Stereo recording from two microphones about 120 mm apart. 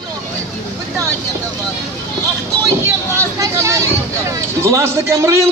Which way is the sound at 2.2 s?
20° right (ahead or behind).